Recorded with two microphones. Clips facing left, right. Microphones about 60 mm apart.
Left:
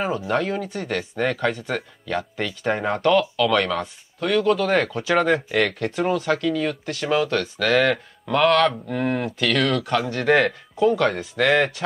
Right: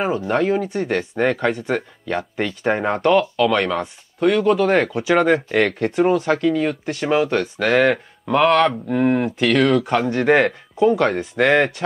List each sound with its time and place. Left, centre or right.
0.3 s speech: centre